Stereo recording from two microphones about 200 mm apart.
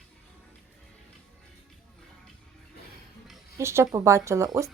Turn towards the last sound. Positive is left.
turn(degrees=-15)  # may be behind; listen again after turning